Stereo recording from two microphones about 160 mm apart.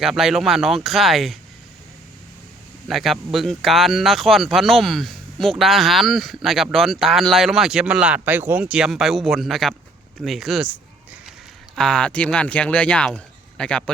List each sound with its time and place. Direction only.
0.0 s speech: centre (ahead or behind)
2.8 s speech: centre (ahead or behind)